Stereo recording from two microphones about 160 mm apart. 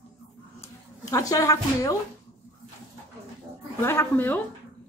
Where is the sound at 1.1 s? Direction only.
20° left (ahead or behind).